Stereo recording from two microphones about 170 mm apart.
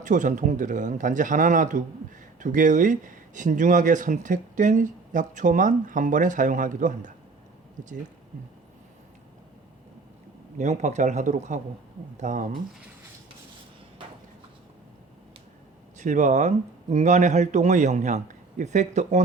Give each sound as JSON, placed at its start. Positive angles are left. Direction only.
{"t": 0.0, "sound": "speech", "side_deg": -45}
{"t": 10.6, "sound": "speech", "side_deg": -45}
{"t": 16.0, "sound": "speech", "side_deg": -45}